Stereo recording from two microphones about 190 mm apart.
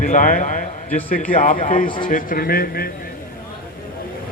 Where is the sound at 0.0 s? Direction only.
45° left (ahead or behind).